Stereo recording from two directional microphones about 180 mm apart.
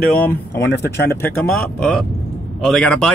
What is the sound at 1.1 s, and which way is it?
Speech, 10° left (ahead or behind).